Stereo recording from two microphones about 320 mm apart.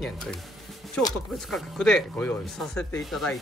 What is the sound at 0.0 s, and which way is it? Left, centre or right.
Speech, centre.